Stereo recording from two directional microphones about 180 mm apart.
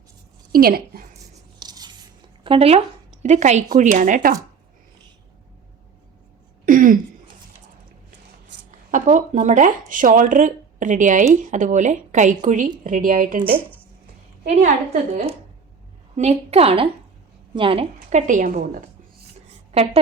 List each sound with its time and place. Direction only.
0.5 s a woman's voice: 55° right (ahead or behind)
1.5 s a sound: 20° right (ahead or behind)
2.4 s speech: 30° right (ahead or behind); by 4.4 s 50° right (ahead or behind)
6.7 s a sound: 50° right (ahead or behind)
8.5 s a sound: 75° right (ahead or behind)
8.9 s speech: 45° right (ahead or behind)
14.4 s a woman's voice: 40° right (ahead or behind)
16.1 s a woman's voice: 35° right (ahead or behind)
19.7 s a woman's voice: 35° right (ahead or behind)